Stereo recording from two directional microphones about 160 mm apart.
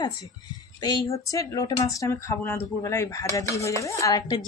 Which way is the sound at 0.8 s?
25° left (ahead or behind).